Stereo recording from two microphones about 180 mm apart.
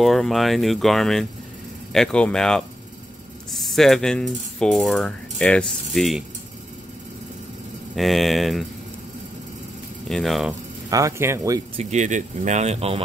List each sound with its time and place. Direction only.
0.0 s speech: centre (ahead or behind)
7.9 s speech: centre (ahead or behind)
10.0 s speech: centre (ahead or behind)
10.9 s speech: 20° right (ahead or behind)
11.7 s speech: 40° right (ahead or behind)